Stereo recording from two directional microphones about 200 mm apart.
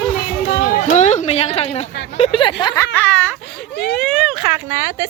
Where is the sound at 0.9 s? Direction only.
35° left (ahead or behind); by 2.8 s 20° left (ahead or behind).